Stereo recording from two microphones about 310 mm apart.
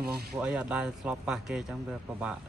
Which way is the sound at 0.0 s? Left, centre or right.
Right.